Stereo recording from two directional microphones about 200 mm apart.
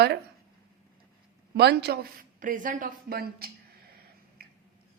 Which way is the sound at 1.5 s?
55° right (ahead or behind).